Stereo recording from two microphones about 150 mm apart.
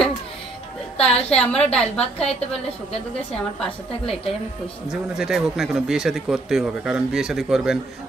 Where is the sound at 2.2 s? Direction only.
45° left (ahead or behind).